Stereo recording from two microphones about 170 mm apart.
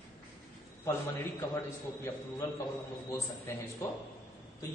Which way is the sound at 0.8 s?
15° left (ahead or behind).